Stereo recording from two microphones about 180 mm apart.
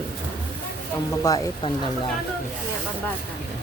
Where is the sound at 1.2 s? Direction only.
20° left (ahead or behind).